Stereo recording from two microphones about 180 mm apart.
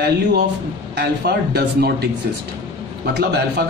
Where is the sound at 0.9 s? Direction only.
65° right (ahead or behind).